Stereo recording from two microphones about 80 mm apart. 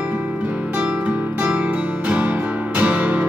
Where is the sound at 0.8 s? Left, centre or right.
Centre.